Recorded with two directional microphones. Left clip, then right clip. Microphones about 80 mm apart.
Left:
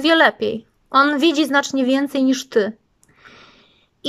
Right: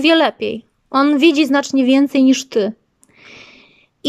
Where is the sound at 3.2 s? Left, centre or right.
Right.